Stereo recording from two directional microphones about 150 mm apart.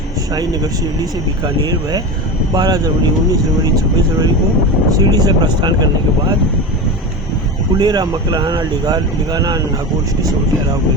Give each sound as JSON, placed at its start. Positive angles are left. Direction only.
{"t": 2.6, "sound": "speech", "side_deg": -25}
{"t": 7.8, "sound": "speech", "side_deg": -25}